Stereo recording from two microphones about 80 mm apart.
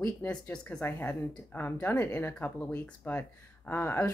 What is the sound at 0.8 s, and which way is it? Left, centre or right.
Speech, left.